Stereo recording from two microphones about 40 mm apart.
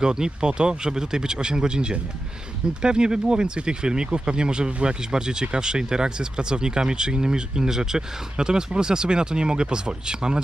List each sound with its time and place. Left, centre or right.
0.0 s speech: centre